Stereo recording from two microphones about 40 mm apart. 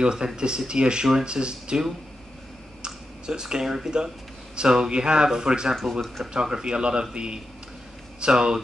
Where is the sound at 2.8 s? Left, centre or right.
Centre.